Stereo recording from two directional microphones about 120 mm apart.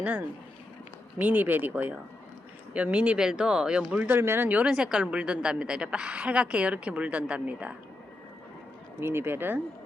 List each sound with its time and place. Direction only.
0.0 s speech: 15° right (ahead or behind)
9.0 s speech: 20° right (ahead or behind)